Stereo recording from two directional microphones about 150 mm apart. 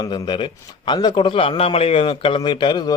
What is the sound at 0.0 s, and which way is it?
A man's voice, 30° left (ahead or behind).